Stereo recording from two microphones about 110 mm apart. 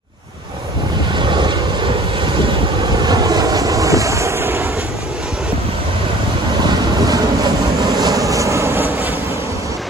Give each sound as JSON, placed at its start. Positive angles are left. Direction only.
{"t": 1.1, "sound": "vehicle", "side_deg": -45}
{"t": 2.9, "sound": "vehicle", "side_deg": -40}
{"t": 6.7, "sound": "vehicle", "side_deg": -40}